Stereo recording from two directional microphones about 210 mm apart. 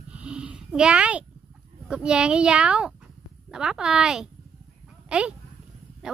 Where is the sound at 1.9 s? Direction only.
5° right (ahead or behind).